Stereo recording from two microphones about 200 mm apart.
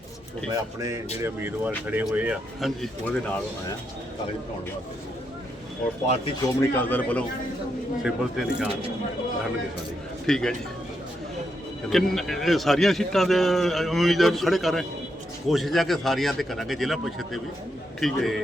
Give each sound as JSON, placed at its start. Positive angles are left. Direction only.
{"t": 0.5, "sound": "speech", "side_deg": -15}
{"t": 6.4, "sound": "speech", "side_deg": 10}
{"t": 8.0, "sound": "a man's voice", "side_deg": -5}
{"t": 10.2, "sound": "a man's voice", "side_deg": 0}
{"t": 11.9, "sound": "a man's voice", "side_deg": 0}